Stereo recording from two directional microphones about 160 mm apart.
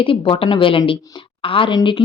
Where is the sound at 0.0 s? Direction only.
35° left (ahead or behind).